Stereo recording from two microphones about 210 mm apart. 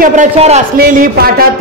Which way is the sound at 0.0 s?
35° right (ahead or behind).